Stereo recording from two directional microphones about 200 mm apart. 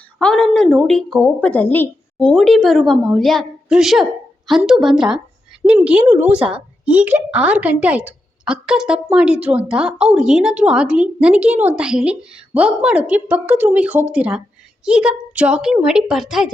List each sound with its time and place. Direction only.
0.2 s speech: 5° left (ahead or behind)